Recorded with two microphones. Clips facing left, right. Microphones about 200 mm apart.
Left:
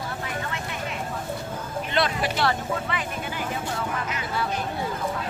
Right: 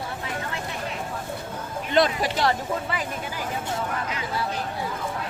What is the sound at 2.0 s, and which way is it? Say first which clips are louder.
Speech: right 3 dB; 35° right (ahead or behind).